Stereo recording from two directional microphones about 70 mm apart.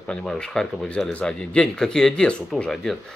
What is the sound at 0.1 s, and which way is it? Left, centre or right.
Speech, centre.